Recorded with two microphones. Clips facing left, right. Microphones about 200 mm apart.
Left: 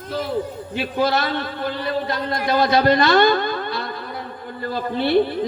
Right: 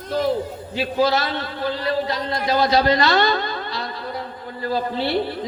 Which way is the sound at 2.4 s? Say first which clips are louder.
Left 1 dB; 55° left (ahead or behind).